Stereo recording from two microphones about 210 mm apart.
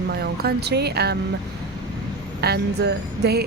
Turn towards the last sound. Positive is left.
turn(degrees=-50)  # may be behind; listen again after turning